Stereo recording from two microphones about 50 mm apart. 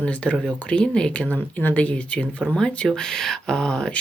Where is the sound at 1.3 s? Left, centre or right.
Left.